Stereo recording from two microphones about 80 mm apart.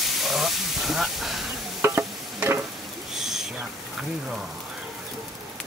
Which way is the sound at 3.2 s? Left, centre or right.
Centre.